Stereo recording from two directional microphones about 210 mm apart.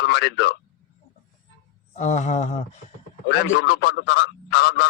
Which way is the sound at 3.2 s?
55° left (ahead or behind).